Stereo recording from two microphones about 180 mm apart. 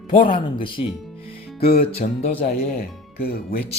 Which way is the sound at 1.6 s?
55° left (ahead or behind).